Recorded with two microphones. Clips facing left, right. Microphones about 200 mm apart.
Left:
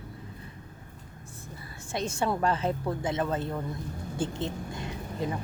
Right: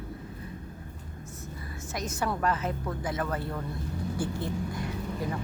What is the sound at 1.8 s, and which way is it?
A woman's voice, 30° left (ahead or behind).